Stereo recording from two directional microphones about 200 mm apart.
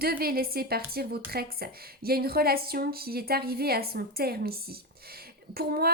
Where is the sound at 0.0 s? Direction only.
50° right (ahead or behind).